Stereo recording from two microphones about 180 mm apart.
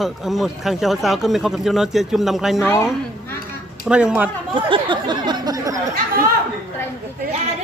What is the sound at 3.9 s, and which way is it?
Speech, 5° right (ahead or behind).